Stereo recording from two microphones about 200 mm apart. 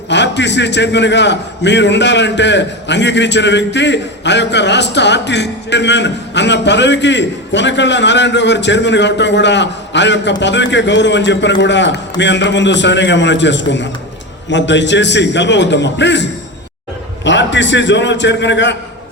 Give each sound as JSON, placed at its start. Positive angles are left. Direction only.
{"t": 0.1, "sound": "a man's voice", "side_deg": 60}